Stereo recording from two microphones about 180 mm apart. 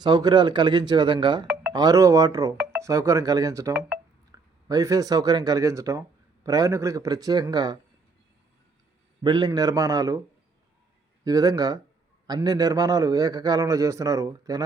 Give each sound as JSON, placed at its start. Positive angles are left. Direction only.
{"t": 0.0, "sound": "a man's voice", "side_deg": -25}
{"t": 9.2, "sound": "a man's voice", "side_deg": -20}
{"t": 11.2, "sound": "a man's voice", "side_deg": -20}